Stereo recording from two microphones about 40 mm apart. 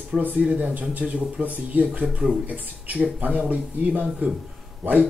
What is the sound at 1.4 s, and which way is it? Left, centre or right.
Speech, right.